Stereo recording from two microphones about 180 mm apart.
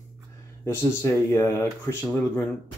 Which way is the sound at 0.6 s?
15° left (ahead or behind).